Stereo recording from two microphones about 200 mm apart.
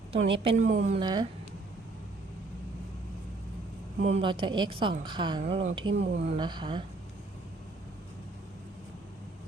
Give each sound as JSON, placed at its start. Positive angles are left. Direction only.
{"t": 0.1, "sound": "a woman's voice", "side_deg": -25}
{"t": 1.0, "sound": "a woman's voice", "side_deg": -20}
{"t": 4.0, "sound": "a woman's voice", "side_deg": -30}
{"t": 5.9, "sound": "speech", "side_deg": -60}
{"t": 6.2, "sound": "a woman's voice", "side_deg": -25}